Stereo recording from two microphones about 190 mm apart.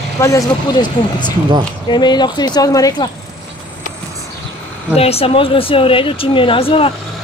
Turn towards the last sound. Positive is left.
turn(degrees=30)  # may be behind; listen again after turning